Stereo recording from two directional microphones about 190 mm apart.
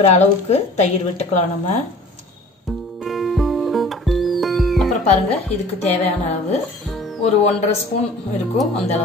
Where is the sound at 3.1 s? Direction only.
Centre (ahead or behind).